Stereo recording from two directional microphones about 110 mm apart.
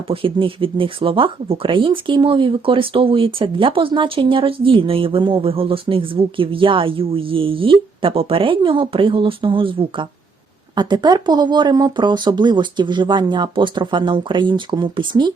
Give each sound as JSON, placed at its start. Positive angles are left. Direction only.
{"t": 0.1, "sound": "speech", "side_deg": -55}
{"t": 10.8, "sound": "speech", "side_deg": -40}